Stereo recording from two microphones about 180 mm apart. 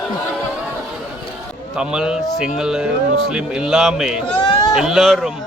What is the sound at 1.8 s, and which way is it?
Speech, 5° right (ahead or behind).